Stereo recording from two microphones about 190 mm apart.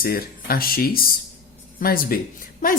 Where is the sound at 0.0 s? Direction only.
50° left (ahead or behind).